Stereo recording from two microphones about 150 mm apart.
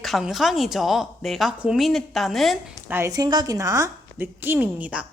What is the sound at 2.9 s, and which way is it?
A woman's voice, 20° right (ahead or behind).